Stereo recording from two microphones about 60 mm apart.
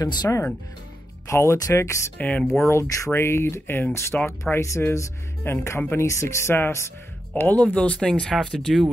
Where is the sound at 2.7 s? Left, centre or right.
Left.